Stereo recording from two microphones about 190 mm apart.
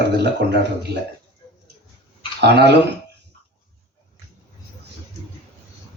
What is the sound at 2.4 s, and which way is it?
Speech, 60° right (ahead or behind).